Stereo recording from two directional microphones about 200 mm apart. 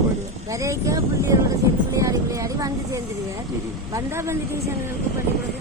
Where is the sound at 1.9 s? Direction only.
15° right (ahead or behind).